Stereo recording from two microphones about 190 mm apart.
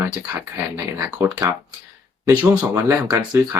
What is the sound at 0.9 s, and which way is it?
Speech, 15° right (ahead or behind).